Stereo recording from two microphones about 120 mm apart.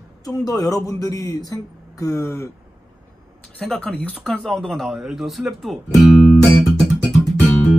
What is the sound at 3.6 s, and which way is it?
Speech, 10° left (ahead or behind).